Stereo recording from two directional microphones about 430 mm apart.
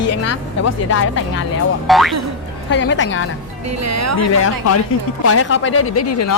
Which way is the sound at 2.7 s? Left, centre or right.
Left.